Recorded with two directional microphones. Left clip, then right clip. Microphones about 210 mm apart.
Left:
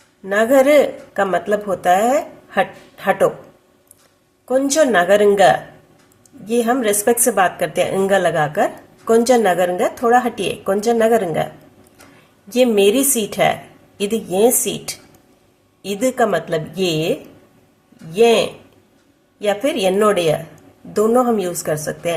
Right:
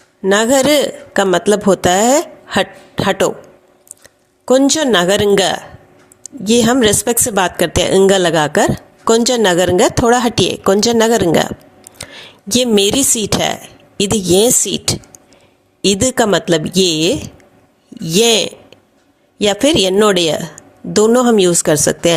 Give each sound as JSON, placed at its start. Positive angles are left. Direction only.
{"t": 0.3, "sound": "speech", "side_deg": -45}
{"t": 4.4, "sound": "speech", "side_deg": -40}
{"t": 12.5, "sound": "a woman's voice", "side_deg": -45}